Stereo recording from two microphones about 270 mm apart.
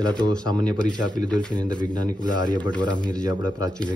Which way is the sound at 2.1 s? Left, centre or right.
Left.